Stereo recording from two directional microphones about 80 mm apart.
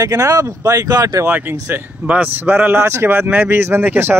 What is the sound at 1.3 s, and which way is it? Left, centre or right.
Speech, right.